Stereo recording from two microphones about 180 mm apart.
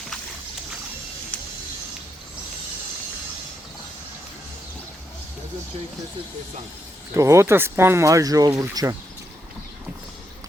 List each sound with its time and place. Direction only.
7.1 s speech: 15° right (ahead or behind)